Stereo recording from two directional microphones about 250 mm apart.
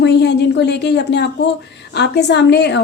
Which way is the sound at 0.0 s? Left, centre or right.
Left.